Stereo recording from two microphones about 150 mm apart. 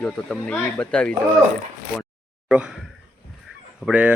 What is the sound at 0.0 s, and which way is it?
Speech, 5° left (ahead or behind).